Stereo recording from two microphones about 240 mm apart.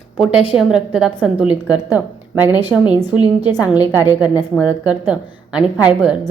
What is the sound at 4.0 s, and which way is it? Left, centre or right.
A woman's voice, centre.